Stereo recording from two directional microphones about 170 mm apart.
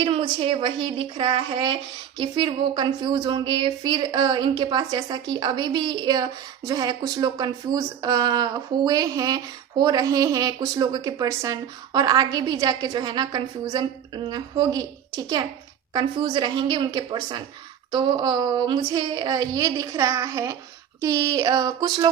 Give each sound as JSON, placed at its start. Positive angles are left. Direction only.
{"t": 0.0, "sound": "speech", "side_deg": -30}